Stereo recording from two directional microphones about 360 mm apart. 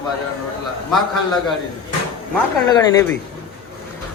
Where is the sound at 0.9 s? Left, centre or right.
Centre.